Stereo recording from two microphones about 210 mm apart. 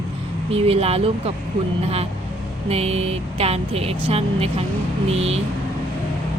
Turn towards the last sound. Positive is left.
turn(degrees=-30)  # may be behind; listen again after turning